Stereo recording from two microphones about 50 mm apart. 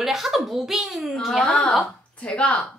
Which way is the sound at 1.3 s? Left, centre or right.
Centre.